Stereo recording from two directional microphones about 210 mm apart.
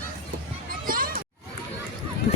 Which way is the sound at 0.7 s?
45° right (ahead or behind).